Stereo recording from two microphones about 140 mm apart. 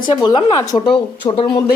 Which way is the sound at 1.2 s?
35° left (ahead or behind).